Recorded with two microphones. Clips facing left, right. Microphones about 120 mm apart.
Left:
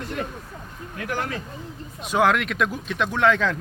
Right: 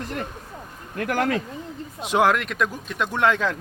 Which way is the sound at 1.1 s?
90° right.